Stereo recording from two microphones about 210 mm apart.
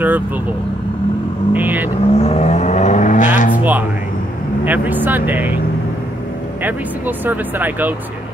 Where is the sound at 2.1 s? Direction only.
30° left (ahead or behind).